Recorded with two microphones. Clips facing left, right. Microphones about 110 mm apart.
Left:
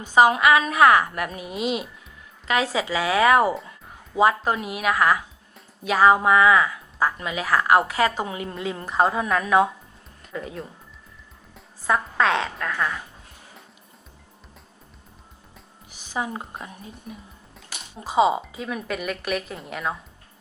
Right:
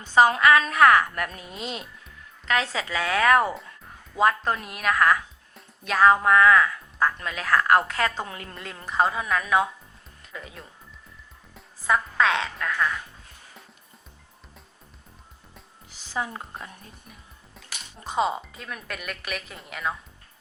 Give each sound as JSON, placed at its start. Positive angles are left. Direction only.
{"t": 0.0, "sound": "a woman's voice", "side_deg": 15}
{"t": 11.5, "sound": "music", "side_deg": 0}
{"t": 15.9, "sound": "music", "side_deg": 15}
{"t": 16.6, "sound": "speech", "side_deg": 5}